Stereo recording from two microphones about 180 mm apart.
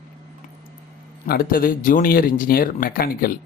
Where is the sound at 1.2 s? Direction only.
55° left (ahead or behind).